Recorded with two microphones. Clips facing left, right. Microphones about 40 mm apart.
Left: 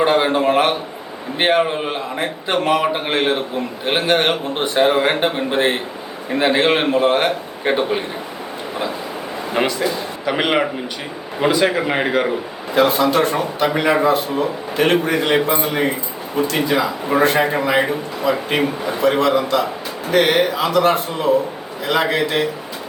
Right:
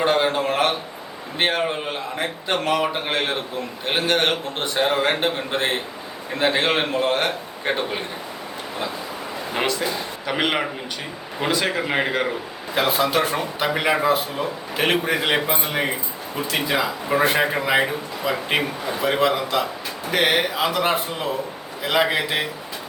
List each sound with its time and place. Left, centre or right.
0.0 s a man's voice: centre
9.5 s a man's voice: centre
12.7 s a man's voice: centre